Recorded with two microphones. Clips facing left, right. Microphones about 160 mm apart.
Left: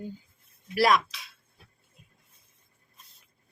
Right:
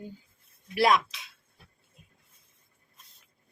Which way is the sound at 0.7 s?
20° right (ahead or behind).